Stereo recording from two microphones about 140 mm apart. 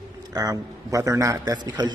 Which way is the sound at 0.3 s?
25° right (ahead or behind).